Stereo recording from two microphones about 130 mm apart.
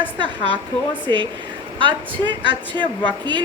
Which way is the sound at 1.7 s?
40° right (ahead or behind).